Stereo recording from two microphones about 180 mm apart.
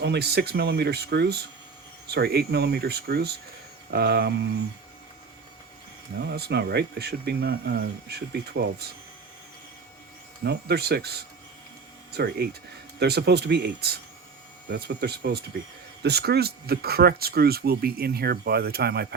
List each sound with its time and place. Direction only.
0.0 s speech: 65° right (ahead or behind)
6.1 s speech: 65° right (ahead or behind)
10.4 s speech: 65° right (ahead or behind)